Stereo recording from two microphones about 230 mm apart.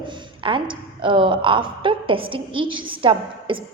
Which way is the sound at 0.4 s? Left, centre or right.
Right.